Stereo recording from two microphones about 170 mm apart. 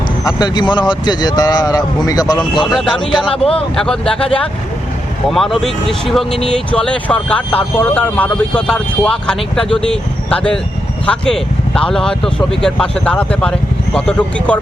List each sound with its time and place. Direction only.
0.3 s speech: 25° left (ahead or behind)
2.7 s speech: centre (ahead or behind)
3.1 s speech: 30° left (ahead or behind)
3.8 s speech: 5° left (ahead or behind)
5.3 s speech: centre (ahead or behind)